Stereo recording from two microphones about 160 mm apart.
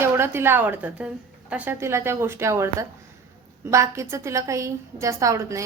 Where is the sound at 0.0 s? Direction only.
15° right (ahead or behind).